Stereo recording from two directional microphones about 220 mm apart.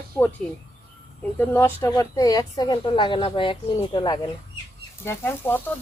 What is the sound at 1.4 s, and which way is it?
Speech, 10° left (ahead or behind).